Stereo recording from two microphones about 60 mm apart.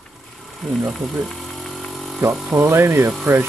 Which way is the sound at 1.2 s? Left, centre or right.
Centre.